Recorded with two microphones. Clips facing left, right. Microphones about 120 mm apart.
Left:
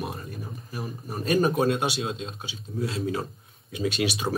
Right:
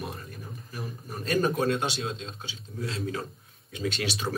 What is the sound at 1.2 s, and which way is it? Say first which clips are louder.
Speech: left 3 dB; 20° left (ahead or behind).